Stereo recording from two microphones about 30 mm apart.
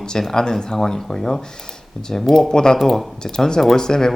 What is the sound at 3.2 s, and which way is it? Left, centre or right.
Speech, left.